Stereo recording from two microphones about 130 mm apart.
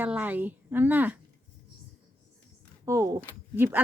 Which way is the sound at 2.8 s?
25° right (ahead or behind).